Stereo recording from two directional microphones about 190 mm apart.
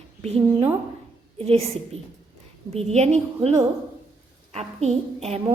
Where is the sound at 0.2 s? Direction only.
35° right (ahead or behind).